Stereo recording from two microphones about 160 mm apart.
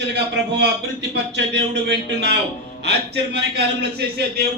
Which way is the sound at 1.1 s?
90° right.